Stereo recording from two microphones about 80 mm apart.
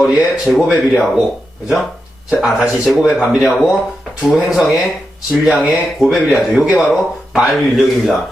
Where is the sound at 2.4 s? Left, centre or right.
Centre.